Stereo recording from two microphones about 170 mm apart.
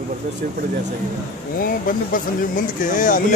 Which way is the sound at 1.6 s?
55° left (ahead or behind).